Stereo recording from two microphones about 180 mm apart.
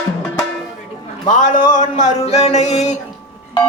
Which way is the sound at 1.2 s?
45° left (ahead or behind).